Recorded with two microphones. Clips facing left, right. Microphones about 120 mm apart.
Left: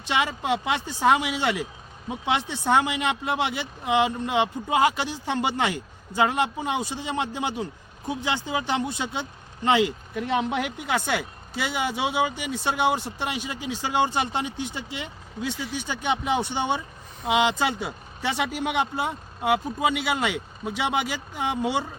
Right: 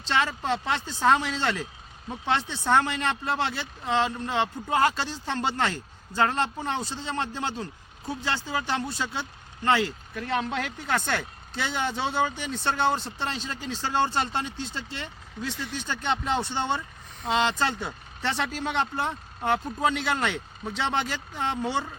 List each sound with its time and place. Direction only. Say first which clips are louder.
0.0 s speech: left 1 dB; 15° left (ahead or behind)